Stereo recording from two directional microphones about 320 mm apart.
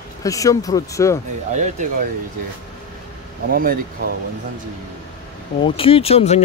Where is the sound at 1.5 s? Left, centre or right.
Right.